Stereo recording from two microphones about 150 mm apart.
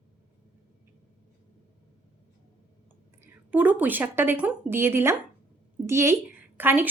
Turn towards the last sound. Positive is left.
turn(degrees=-10)  # may be behind; listen again after turning